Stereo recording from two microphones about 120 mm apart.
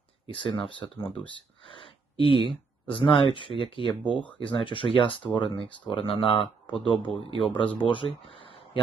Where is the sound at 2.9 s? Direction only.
45° left (ahead or behind).